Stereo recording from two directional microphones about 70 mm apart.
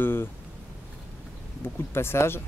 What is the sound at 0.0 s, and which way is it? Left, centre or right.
Speech, left.